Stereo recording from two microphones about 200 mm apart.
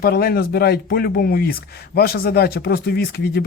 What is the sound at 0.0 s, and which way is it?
Speech, 50° left (ahead or behind).